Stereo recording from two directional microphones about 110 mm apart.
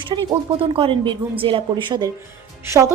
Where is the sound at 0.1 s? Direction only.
50° right (ahead or behind).